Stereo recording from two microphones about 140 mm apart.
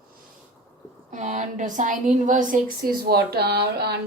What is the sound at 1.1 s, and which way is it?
A woman's voice, 60° right (ahead or behind).